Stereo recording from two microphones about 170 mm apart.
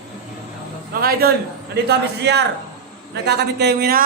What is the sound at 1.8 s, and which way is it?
A man's voice, 80° right.